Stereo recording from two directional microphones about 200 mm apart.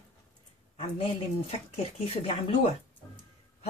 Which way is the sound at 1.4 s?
30° left (ahead or behind).